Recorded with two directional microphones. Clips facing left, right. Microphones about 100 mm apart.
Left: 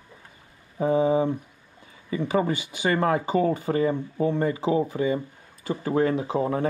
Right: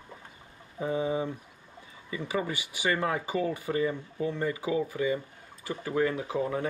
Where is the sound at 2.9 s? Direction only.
45° left (ahead or behind).